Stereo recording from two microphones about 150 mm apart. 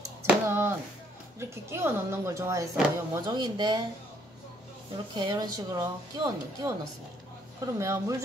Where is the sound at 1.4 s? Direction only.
15° right (ahead or behind).